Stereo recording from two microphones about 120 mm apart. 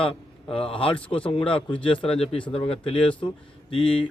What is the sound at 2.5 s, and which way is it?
Speech, 50° left (ahead or behind).